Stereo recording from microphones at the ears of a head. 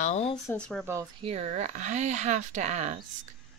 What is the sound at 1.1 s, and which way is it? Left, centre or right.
Speech, right.